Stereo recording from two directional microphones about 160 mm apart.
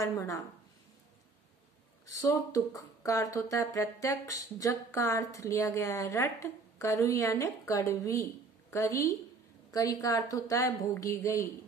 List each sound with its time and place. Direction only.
0.0 s speech: 20° left (ahead or behind)
2.2 s speech: 20° left (ahead or behind)